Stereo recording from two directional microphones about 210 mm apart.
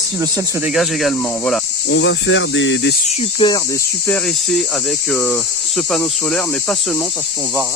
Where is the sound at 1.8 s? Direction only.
60° left (ahead or behind).